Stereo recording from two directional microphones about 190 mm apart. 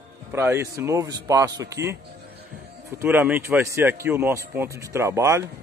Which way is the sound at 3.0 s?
10° right (ahead or behind).